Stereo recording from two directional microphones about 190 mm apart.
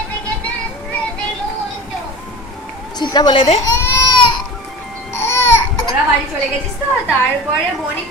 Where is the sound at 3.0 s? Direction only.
20° left (ahead or behind).